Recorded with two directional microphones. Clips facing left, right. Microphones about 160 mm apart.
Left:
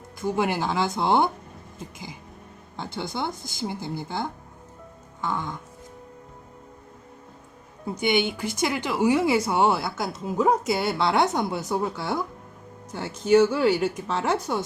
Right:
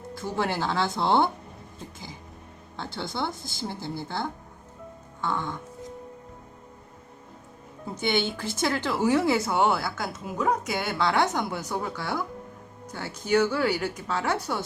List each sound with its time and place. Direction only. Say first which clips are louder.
0.1 s speech: left 4 dB; 15° left (ahead or behind)
2.7 s speech: left 1 dB; 15° left (ahead or behind)
7.9 s speech: left 3 dB; 15° left (ahead or behind)